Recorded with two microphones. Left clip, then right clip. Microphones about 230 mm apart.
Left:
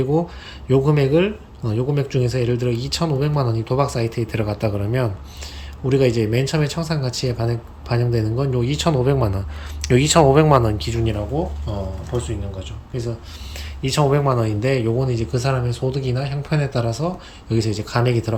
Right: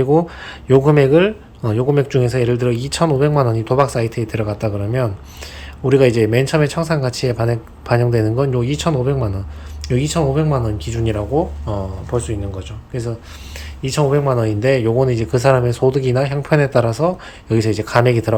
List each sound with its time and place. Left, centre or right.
0.0 s speech: centre
11.6 s speech: centre
13.8 s speech: centre